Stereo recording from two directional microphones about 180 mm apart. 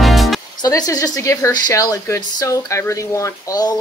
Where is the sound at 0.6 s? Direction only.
20° left (ahead or behind).